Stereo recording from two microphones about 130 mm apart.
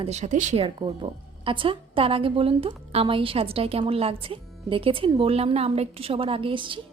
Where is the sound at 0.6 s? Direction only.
45° right (ahead or behind).